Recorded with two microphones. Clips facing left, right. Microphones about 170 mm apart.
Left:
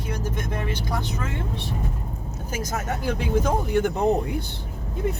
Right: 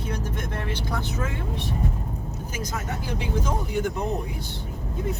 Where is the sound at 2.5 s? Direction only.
50° left (ahead or behind).